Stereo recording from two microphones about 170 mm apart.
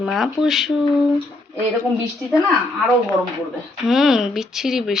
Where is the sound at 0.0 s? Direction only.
Centre (ahead or behind).